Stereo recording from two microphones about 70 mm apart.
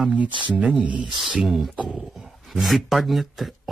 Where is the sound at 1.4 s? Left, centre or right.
Centre.